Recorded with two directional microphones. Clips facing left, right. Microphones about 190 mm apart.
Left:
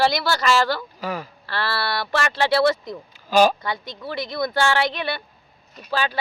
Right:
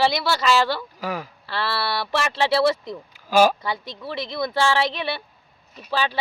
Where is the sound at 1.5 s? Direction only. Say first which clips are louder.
Even; centre (ahead or behind).